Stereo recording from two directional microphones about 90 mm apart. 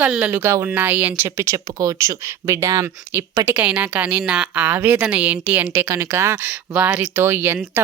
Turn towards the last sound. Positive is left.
turn(degrees=-25)  # may be behind; listen again after turning